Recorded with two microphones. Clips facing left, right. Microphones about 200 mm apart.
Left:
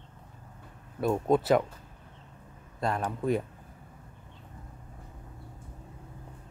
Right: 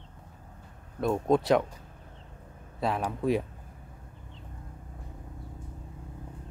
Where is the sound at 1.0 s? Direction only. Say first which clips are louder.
Even; 5° left (ahead or behind).